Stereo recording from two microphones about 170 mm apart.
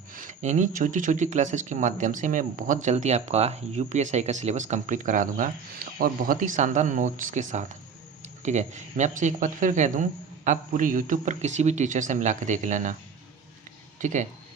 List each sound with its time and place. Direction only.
0.1 s speech: 50° right (ahead or behind)
14.0 s speech: 45° right (ahead or behind)